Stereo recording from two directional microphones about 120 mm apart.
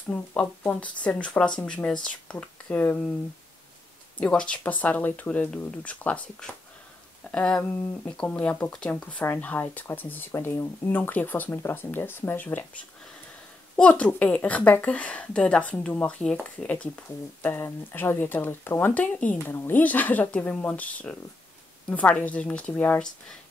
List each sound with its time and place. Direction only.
0.1 s a woman's voice: 15° left (ahead or behind)
4.2 s a woman's voice: 10° left (ahead or behind)
13.7 s a woman's voice: 10° left (ahead or behind)